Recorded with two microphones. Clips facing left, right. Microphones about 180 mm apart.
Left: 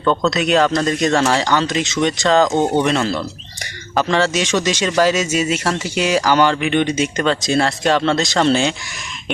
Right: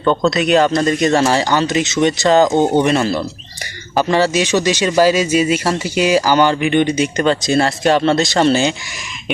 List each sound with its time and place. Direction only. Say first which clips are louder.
0.0 s speech: right 2 dB; 10° right (ahead or behind)